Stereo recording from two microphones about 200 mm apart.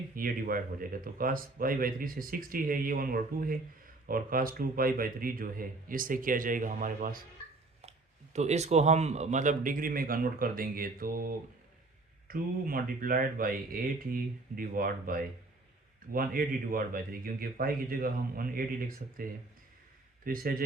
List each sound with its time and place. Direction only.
0.2 s speech: 45° right (ahead or behind)